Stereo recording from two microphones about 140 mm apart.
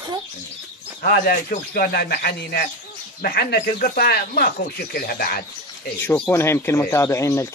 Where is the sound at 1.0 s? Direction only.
90° left.